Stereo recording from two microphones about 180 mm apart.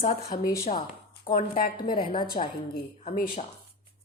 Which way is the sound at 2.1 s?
25° left (ahead or behind).